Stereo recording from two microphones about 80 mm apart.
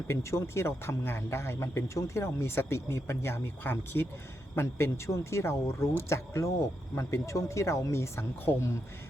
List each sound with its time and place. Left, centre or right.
0.1 s speech: left